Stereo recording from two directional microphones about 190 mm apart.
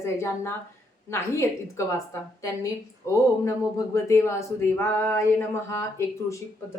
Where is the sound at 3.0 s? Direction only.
15° left (ahead or behind).